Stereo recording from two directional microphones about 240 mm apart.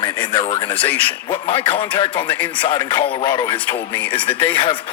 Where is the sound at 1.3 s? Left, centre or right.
Left.